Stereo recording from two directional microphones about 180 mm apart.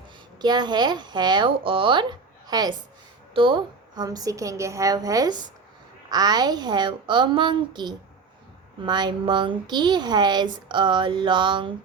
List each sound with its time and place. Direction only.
0.4 s speech: 25° right (ahead or behind)